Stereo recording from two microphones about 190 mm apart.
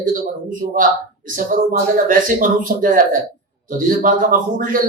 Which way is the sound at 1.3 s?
45° right (ahead or behind).